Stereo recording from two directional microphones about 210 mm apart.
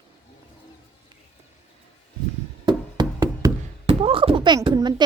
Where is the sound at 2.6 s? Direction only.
20° right (ahead or behind).